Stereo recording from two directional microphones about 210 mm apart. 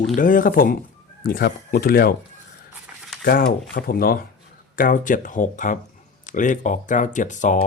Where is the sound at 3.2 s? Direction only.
45° left (ahead or behind).